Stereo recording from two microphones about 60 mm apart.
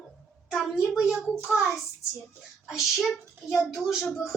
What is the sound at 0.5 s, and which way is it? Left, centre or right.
A child's voice, centre.